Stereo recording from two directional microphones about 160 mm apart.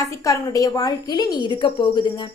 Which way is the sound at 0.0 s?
20° left (ahead or behind).